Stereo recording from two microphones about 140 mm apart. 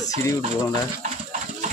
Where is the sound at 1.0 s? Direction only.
60° right (ahead or behind).